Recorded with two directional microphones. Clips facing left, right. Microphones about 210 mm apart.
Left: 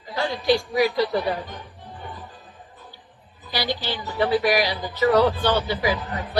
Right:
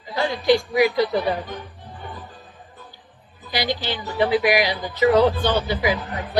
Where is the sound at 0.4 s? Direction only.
15° right (ahead or behind).